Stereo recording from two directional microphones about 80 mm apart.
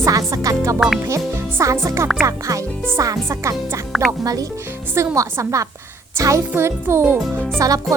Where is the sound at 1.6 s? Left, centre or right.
Right.